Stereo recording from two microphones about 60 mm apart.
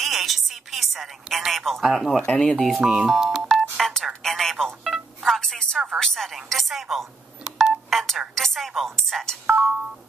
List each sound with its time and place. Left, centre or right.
0.0 s a woman's voice: centre
2.8 s speech: centre
3.7 s telephone dialing: centre
4.2 s telephone: centre
5.9 s speech: centre
9.5 s speech: centre